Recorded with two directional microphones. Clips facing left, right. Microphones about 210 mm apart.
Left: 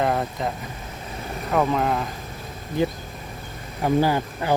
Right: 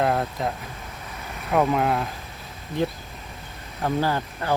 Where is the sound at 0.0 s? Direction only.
Centre (ahead or behind).